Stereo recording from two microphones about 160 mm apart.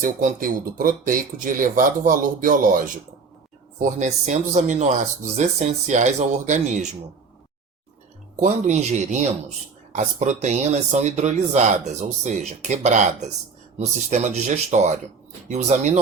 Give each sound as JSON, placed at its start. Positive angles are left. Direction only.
{"t": 0.0, "sound": "speech", "side_deg": -55}
{"t": 8.4, "sound": "speech", "side_deg": -50}